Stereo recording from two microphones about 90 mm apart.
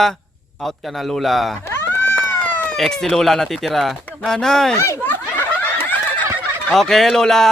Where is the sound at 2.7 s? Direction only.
5° left (ahead or behind).